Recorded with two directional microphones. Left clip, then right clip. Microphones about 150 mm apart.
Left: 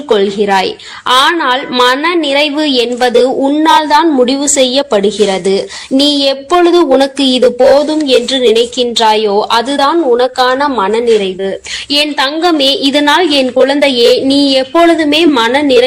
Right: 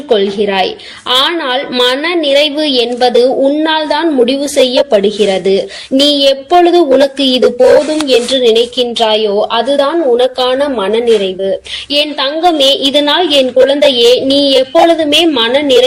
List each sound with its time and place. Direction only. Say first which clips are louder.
0.1 s a woman's voice: left 1 dB; 15° left (ahead or behind)
11.9 s a woman's voice: left 1 dB; 25° left (ahead or behind)